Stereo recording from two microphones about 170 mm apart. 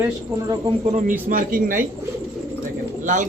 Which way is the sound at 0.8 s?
45° right (ahead or behind).